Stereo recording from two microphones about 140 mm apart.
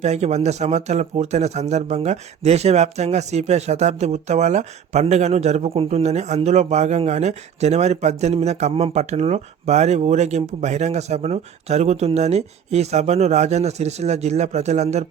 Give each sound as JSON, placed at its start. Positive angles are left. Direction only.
{"t": 0.0, "sound": "speech", "side_deg": -50}